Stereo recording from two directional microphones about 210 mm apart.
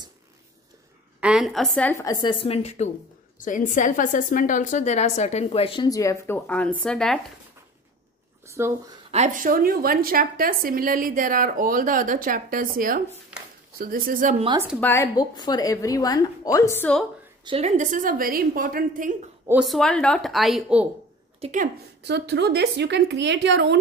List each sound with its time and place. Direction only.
1.2 s a woman's voice: centre (ahead or behind)
8.5 s speech: 10° right (ahead or behind)
9.1 s a woman's voice: 35° right (ahead or behind)
14.8 s a woman's voice: 10° left (ahead or behind)
17.5 s a woman's voice: 30° right (ahead or behind)
19.4 s speech: 5° right (ahead or behind)
21.4 s speech: 35° right (ahead or behind)
22.0 s a woman's voice: 55° right (ahead or behind)